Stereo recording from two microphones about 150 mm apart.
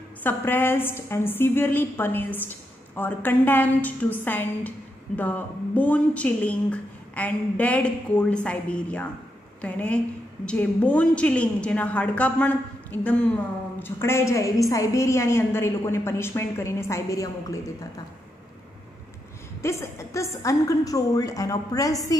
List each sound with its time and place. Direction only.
0.2 s a woman's voice: 15° left (ahead or behind)
19.6 s a woman's voice: 20° left (ahead or behind)